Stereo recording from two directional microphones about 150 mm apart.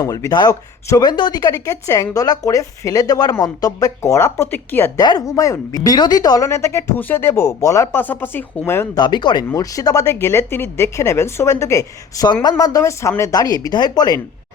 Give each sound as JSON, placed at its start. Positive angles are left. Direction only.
{"t": 0.0, "sound": "speech", "side_deg": 25}
{"t": 4.9, "sound": "speech", "side_deg": 25}
{"t": 9.0, "sound": "speech", "side_deg": 30}